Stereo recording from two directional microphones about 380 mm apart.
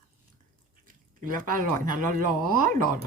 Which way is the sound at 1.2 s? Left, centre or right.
Right.